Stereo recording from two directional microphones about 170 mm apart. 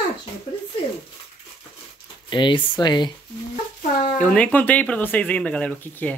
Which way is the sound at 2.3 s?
30° left (ahead or behind).